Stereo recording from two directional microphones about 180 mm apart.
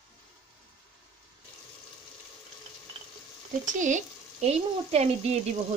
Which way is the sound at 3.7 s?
45° right (ahead or behind).